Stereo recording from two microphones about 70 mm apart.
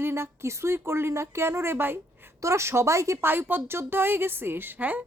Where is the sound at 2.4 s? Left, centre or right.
Right.